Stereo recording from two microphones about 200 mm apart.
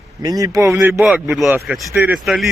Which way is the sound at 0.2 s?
20° right (ahead or behind).